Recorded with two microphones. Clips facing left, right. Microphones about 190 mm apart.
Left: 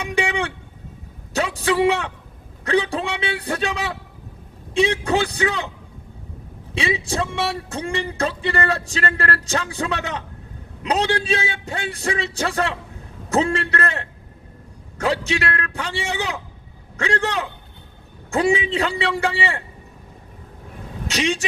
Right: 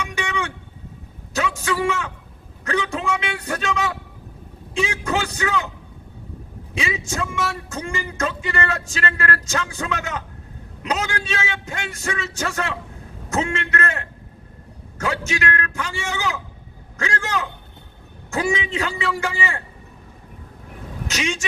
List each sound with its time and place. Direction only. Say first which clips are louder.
0.0 s a sound: left 4 dB; 35° left (ahead or behind)
4.7 s a man's voice: left 4 dB; 35° left (ahead or behind)
6.7 s speech: left 3 dB; 35° left (ahead or behind)
21.1 s speech: left 4 dB; 35° left (ahead or behind)